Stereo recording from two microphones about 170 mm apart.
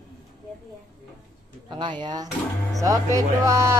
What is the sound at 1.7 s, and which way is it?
Speech, 25° right (ahead or behind).